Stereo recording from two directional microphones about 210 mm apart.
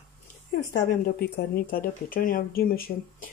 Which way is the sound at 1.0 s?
50° left (ahead or behind).